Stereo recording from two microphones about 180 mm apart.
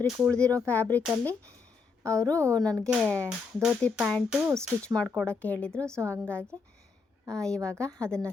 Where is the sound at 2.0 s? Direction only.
15° right (ahead or behind).